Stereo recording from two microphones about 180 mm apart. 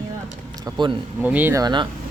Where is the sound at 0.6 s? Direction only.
25° right (ahead or behind).